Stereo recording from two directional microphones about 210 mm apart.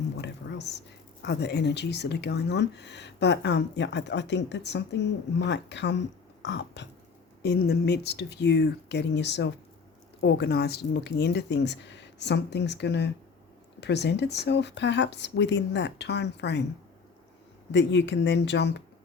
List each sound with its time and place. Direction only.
0.2 s a sound: 55° left (ahead or behind)
1.2 s speech: 55° left (ahead or behind)
6.4 s burping: 55° left (ahead or behind)
7.4 s speech: 50° left (ahead or behind)
17.7 s speech: 55° left (ahead or behind)